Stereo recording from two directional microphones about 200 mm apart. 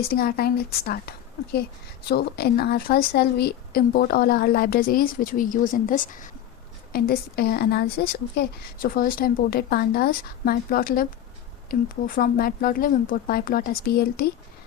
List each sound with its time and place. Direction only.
0.0 s speech: 50° left (ahead or behind)